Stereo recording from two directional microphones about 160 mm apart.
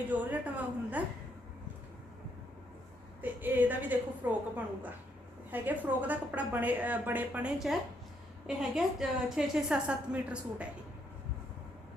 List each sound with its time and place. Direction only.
0.1 s a woman's voice: 10° right (ahead or behind)
3.2 s a woman's voice: 10° right (ahead or behind)